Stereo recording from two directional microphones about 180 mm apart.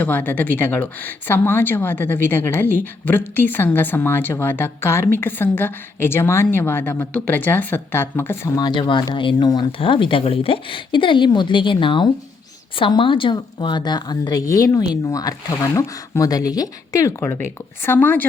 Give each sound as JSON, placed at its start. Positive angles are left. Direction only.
{"t": 0.0, "sound": "a woman's voice", "side_deg": 10}